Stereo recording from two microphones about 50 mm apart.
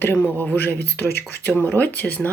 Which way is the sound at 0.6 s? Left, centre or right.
Left.